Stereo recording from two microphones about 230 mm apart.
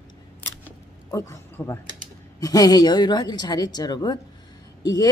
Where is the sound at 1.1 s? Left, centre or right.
Centre.